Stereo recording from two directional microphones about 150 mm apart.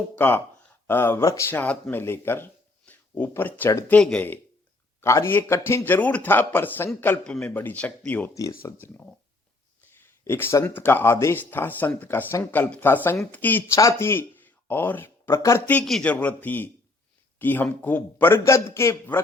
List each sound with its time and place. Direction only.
0.2 s speech: 15° left (ahead or behind)
15.8 s speech: 5° left (ahead or behind)